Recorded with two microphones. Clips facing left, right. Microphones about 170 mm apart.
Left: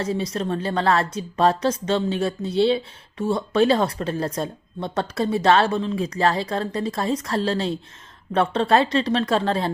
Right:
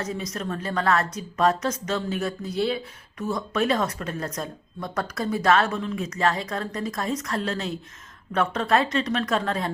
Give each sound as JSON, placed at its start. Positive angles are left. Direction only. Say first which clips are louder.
{"t": 0.0, "sound": "a woman's voice", "louder": "left 5 dB", "side_deg": 30}